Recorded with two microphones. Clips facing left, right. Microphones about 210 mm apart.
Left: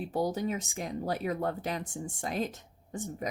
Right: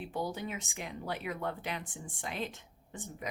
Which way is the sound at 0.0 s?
40° left (ahead or behind).